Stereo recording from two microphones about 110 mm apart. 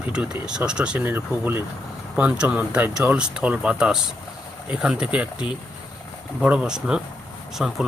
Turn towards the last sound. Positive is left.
turn(degrees=-10)  # may be behind; listen again after turning